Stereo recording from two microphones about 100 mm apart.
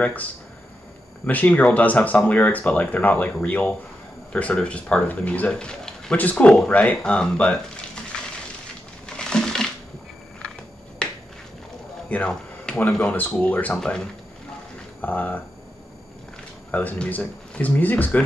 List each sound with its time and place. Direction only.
0.0 s speech: 15° left (ahead or behind)
9.0 s crushing: 5° left (ahead or behind)
12.1 s speech: 10° left (ahead or behind)
16.7 s speech: 15° left (ahead or behind)